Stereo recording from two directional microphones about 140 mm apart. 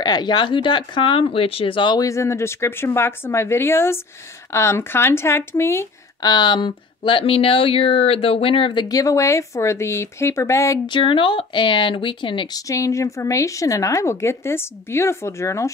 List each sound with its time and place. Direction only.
0.0 s speech: 30° left (ahead or behind)
2.0 s speech: 20° left (ahead or behind)
6.3 s speech: 30° left (ahead or behind)
10.9 s speech: 35° left (ahead or behind)
12.6 s a woman's voice: 20° left (ahead or behind)